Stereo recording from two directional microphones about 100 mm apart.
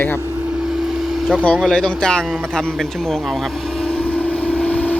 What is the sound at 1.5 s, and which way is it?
Speech, 5° left (ahead or behind).